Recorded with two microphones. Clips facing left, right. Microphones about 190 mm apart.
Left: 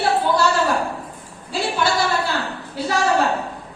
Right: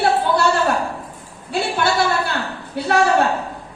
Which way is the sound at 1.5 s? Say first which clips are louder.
Right 1 dB; 60° right (ahead or behind).